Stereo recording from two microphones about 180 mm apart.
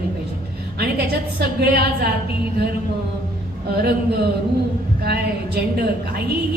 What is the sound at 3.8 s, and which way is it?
Speech, 60° right (ahead or behind).